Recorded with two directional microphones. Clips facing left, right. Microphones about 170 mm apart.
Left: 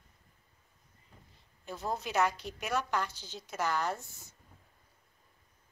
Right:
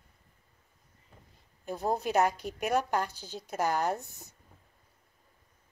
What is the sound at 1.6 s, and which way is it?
A woman's voice, 40° right (ahead or behind).